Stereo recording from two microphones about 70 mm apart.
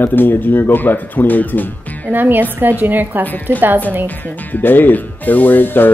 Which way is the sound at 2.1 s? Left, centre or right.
Right.